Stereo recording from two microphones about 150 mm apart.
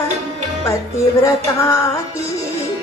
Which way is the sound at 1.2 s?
20° left (ahead or behind).